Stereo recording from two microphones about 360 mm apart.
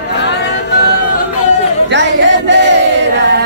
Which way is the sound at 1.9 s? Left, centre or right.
Right.